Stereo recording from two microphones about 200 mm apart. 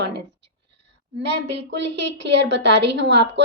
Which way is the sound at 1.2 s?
60° right (ahead or behind).